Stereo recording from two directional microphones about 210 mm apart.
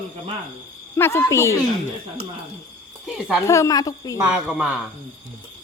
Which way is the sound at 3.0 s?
Centre (ahead or behind).